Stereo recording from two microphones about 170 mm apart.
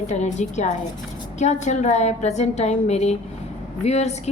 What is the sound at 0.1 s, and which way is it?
A woman's voice, 45° left (ahead or behind).